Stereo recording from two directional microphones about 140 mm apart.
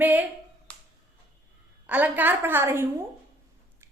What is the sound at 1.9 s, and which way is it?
A woman's voice, 10° right (ahead or behind).